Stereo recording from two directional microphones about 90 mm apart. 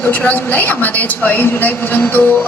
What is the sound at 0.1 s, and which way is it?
A woman's voice, 15° left (ahead or behind).